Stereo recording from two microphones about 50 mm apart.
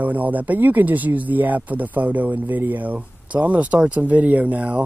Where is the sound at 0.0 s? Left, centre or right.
Right.